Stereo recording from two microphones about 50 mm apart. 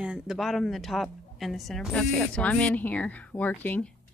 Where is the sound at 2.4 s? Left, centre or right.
Left.